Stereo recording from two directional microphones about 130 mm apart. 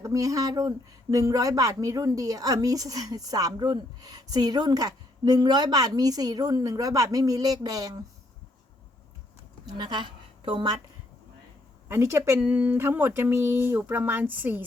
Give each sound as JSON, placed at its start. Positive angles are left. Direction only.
{"t": 0.0, "sound": "a woman's voice", "side_deg": -25}
{"t": 9.6, "sound": "a woman's voice", "side_deg": -35}
{"t": 11.9, "sound": "speech", "side_deg": -20}